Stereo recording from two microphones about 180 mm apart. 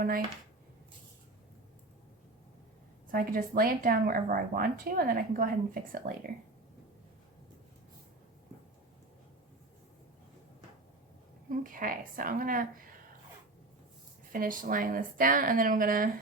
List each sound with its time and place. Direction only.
3.1 s speech: 50° right (ahead or behind)
11.4 s speech: 50° right (ahead or behind)
14.3 s speech: 50° right (ahead or behind)